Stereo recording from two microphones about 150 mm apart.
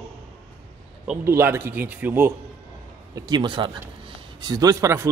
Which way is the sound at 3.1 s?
30° right (ahead or behind).